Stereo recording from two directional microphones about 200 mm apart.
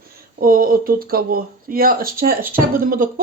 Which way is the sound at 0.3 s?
45° right (ahead or behind).